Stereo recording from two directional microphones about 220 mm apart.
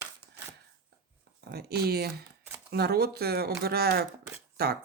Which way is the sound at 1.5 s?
45° right (ahead or behind).